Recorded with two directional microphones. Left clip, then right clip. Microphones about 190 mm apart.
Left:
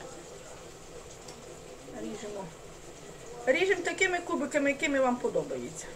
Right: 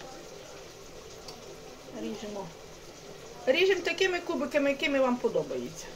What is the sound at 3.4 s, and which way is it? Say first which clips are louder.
A woman's voice: right 2 dB; 25° right (ahead or behind).